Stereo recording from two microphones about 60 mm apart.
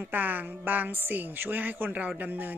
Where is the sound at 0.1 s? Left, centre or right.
Right.